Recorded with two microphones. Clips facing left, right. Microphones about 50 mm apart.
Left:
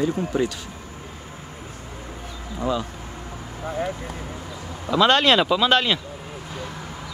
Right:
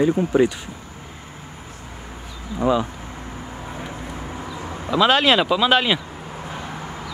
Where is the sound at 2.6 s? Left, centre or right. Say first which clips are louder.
Right 5 dB; centre.